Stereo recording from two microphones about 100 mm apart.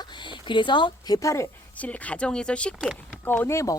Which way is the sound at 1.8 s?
15° left (ahead or behind).